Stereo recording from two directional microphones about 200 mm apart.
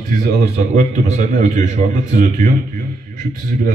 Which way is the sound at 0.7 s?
35° right (ahead or behind).